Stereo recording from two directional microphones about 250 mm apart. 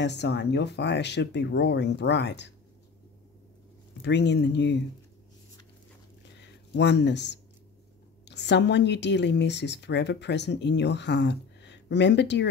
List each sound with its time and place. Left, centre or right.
0.0 s speech: left
4.0 s speech: left
6.4 s speech: left